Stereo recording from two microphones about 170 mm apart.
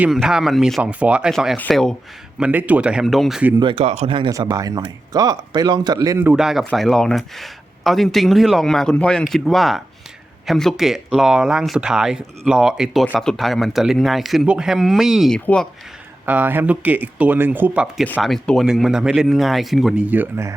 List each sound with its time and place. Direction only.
0.0 s speech: 5° right (ahead or behind)
2.4 s speech: 10° right (ahead or behind)
3.6 s speech: 30° right (ahead or behind)
4.3 s speech: 20° right (ahead or behind)
6.1 s speech: 10° right (ahead or behind)
16.2 s speech: 10° right (ahead or behind)
18.0 s speech: 5° left (ahead or behind); by 20.6 s 15° right (ahead or behind)